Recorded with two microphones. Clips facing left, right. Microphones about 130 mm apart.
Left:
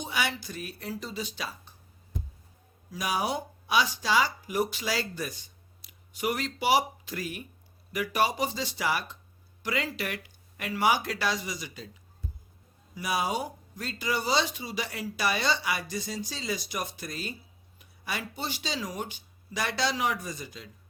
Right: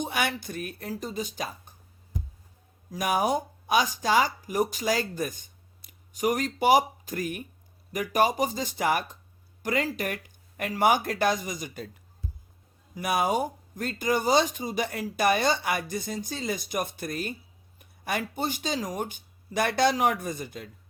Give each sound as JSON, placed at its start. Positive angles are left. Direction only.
{"t": 0.0, "sound": "speech", "side_deg": -55}
{"t": 2.9, "sound": "speech", "side_deg": -50}
{"t": 12.9, "sound": "speech", "side_deg": -55}